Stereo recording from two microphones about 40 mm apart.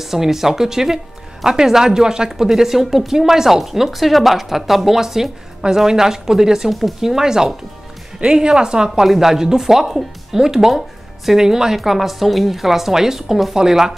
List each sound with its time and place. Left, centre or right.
0.0 s speech: centre